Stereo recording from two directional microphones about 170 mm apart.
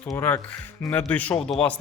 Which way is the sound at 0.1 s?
15° left (ahead or behind).